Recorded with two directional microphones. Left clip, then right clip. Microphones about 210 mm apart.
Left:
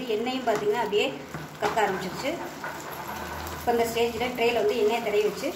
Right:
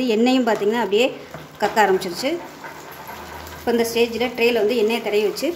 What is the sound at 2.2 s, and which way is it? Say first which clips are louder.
Speech: right 6 dB; 55° right (ahead or behind).